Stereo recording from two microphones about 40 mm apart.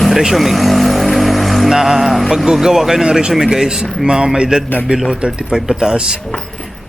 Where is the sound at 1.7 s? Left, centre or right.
Centre.